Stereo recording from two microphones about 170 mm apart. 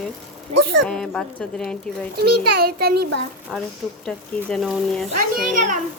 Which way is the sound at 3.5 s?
Centre (ahead or behind).